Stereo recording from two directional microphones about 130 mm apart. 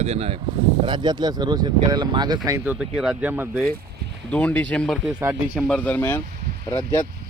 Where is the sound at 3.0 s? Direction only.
10° right (ahead or behind).